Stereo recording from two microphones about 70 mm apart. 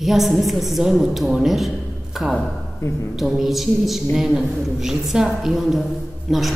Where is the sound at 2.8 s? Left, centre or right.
Left.